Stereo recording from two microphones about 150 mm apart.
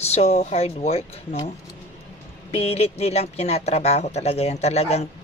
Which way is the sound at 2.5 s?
40° left (ahead or behind).